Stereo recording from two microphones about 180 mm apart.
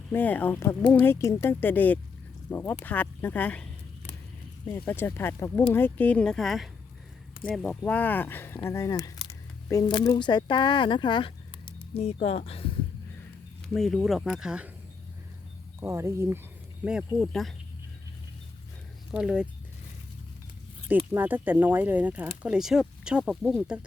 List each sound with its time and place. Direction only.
0.1 s speech: 10° left (ahead or behind); by 12.4 s 35° left (ahead or behind)
13.7 s speech: centre (ahead or behind)
15.8 s speech: 15° right (ahead or behind)
19.1 s speech: 5° right (ahead or behind)
20.8 s speech: 10° right (ahead or behind)